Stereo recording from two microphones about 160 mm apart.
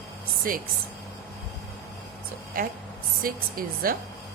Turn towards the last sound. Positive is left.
turn(degrees=-65)  # may be behind; listen again after turning